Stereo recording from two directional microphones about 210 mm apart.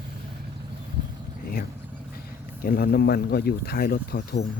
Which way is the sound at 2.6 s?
45° left (ahead or behind).